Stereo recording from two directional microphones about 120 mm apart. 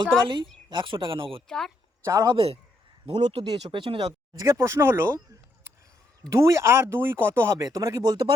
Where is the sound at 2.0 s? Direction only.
30° right (ahead or behind).